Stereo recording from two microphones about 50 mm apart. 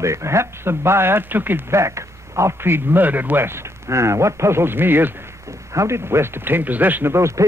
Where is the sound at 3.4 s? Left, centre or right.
Right.